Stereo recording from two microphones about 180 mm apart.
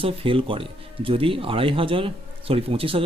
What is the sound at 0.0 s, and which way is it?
Speech, 30° right (ahead or behind).